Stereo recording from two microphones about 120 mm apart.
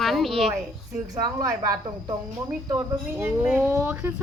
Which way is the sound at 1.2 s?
30° right (ahead or behind).